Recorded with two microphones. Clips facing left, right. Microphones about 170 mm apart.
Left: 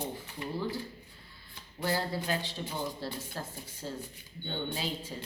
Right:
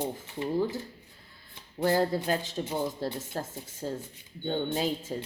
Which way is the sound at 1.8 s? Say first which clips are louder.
Right 7 dB; 45° right (ahead or behind).